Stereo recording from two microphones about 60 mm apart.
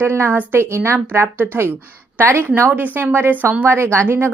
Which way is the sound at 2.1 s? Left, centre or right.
Right.